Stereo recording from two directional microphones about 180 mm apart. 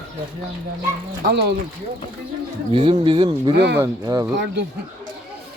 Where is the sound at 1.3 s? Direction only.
70° right (ahead or behind).